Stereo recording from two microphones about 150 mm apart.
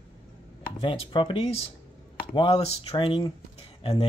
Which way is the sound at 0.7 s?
35° left (ahead or behind).